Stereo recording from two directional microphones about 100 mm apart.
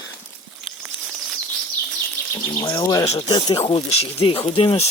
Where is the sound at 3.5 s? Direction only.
85° left; by 4.8 s 70° left (ahead or behind).